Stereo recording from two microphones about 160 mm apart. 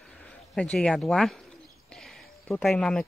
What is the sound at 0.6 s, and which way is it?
Speech, 5° left (ahead or behind).